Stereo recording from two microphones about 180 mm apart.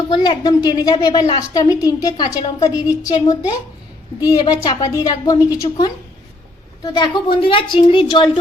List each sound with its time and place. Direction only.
0.1 s a woman's voice: 25° left (ahead or behind)